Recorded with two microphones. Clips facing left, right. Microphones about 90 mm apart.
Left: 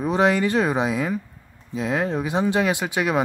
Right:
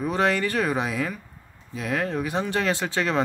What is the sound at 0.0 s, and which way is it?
Speech, 20° left (ahead or behind).